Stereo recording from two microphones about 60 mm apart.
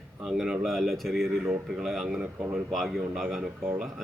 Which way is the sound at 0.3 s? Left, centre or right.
Centre.